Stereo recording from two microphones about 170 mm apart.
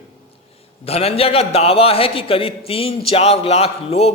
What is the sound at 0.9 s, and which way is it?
A man's voice, 35° left (ahead or behind).